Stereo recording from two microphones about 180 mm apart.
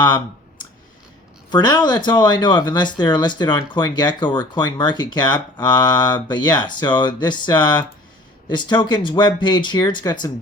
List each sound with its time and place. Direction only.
1.5 s speech: 25° left (ahead or behind)